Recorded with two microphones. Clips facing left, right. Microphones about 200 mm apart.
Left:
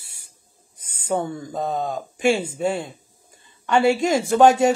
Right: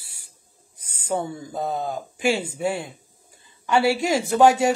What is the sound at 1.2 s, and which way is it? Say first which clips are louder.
Speech: left 2 dB; 5° right (ahead or behind).